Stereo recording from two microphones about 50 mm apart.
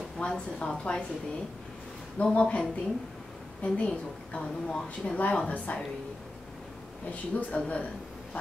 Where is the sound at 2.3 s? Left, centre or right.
Left.